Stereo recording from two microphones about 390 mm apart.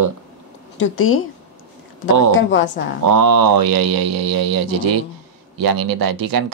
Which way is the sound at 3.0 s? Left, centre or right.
Right.